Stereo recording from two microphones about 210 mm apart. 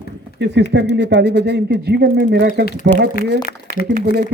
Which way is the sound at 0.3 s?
55° right (ahead or behind).